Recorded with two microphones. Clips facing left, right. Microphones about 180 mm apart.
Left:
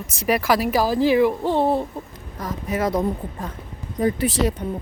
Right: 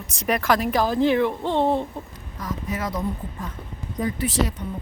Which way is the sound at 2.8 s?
35° left (ahead or behind).